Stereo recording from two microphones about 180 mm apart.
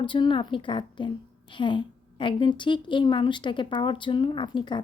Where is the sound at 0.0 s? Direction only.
25° left (ahead or behind).